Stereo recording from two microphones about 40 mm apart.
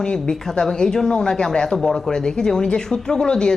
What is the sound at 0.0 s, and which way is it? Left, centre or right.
A woman's voice, left.